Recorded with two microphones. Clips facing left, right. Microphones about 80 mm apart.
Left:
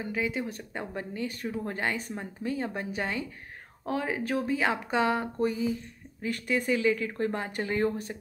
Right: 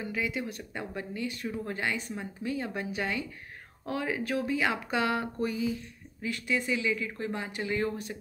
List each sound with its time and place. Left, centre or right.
0.0 s speech: left